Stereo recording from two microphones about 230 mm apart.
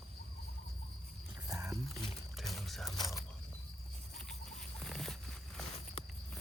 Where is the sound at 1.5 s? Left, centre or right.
Centre.